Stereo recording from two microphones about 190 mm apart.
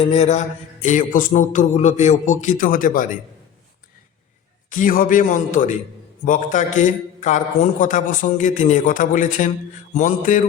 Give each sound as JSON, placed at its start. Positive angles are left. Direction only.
{"t": 0.0, "sound": "a man's voice", "side_deg": 35}
{"t": 4.8, "sound": "a man's voice", "side_deg": 45}